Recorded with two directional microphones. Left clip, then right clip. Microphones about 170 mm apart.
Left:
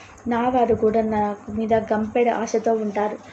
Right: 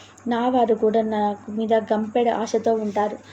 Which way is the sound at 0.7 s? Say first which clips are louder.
Even; 30° right (ahead or behind).